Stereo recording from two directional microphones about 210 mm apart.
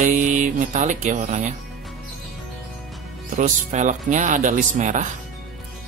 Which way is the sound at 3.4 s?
35° right (ahead or behind).